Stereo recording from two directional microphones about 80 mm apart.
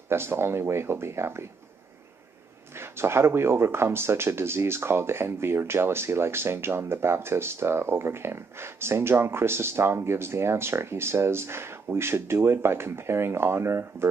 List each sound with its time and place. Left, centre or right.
0.1 s speech: right
2.7 s speech: right